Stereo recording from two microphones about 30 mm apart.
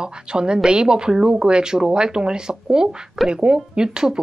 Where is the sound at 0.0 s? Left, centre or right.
Right.